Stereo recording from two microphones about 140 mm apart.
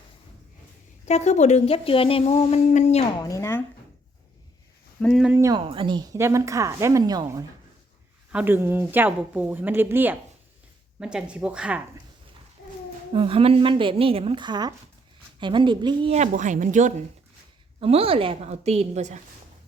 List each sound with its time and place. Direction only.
1.0 s a woman's voice: 55° left (ahead or behind)
3.2 s speech: 20° left (ahead or behind)
4.9 s speech: 5° left (ahead or behind)
5.2 s speech: 15° right (ahead or behind)
5.5 s a woman's voice: 35° right (ahead or behind)
8.3 s speech: 10° right (ahead or behind)
13.1 s a woman's voice: 40° right (ahead or behind)
16.1 s speech: 60° right (ahead or behind)
17.7 s a woman's voice: 45° right (ahead or behind)